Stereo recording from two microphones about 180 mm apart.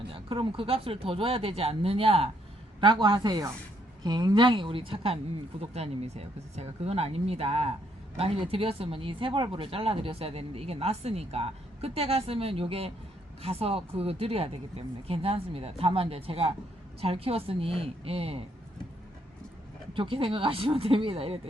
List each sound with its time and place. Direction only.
0.1 s speech: 30° right (ahead or behind)
19.9 s speech: 30° right (ahead or behind)